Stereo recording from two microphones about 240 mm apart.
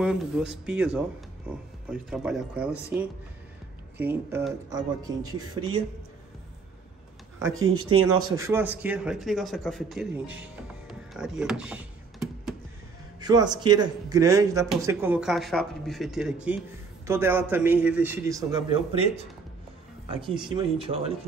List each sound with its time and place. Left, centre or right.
0.0 s a man's voice: centre
4.0 s a man's voice: centre
7.5 s speech: right
7.8 s a man's voice: centre
10.9 s typing: centre
13.4 s a man's voice: right
13.7 s a man's voice: centre